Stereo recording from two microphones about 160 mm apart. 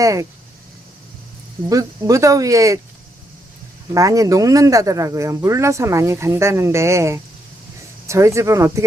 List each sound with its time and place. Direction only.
0.0 s speech: 20° right (ahead or behind)
1.7 s speech: 20° right (ahead or behind)
3.9 s speech: 20° right (ahead or behind)